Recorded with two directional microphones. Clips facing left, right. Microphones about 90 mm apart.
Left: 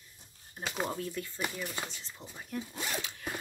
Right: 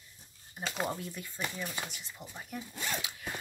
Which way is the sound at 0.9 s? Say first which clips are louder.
Left 5 dB; 15° right (ahead or behind).